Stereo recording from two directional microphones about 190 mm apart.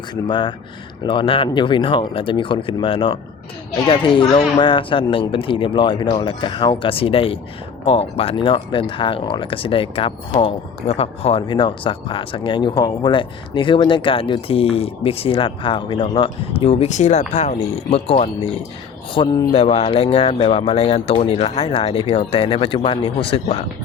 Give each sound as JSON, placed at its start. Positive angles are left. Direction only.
{"t": 0.1, "sound": "speech", "side_deg": 25}